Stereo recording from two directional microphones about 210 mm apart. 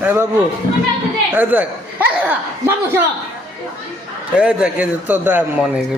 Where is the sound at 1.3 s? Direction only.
10° right (ahead or behind).